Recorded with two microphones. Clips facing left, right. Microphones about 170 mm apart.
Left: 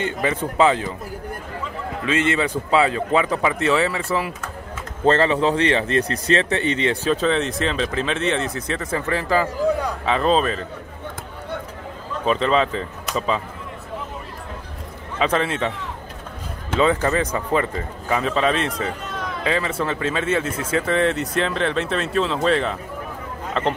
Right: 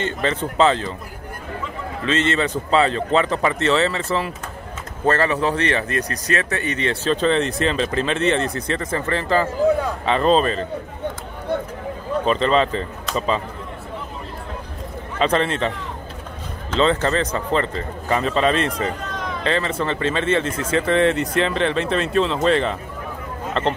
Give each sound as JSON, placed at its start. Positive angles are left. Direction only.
{"t": 0.0, "sound": "speech", "side_deg": 10}
{"t": 2.0, "sound": "speech", "side_deg": 10}
{"t": 5.0, "sound": "speech", "side_deg": 20}
{"t": 7.1, "sound": "speech", "side_deg": 5}
{"t": 12.3, "sound": "speech", "side_deg": 5}
{"t": 15.1, "sound": "speech", "side_deg": 5}
{"t": 16.7, "sound": "speech", "side_deg": 10}